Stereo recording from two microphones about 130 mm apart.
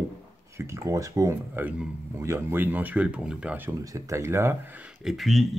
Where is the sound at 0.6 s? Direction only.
25° right (ahead or behind).